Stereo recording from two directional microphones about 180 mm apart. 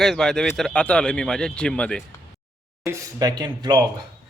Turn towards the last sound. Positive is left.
turn(degrees=-25)  # may be behind; listen again after turning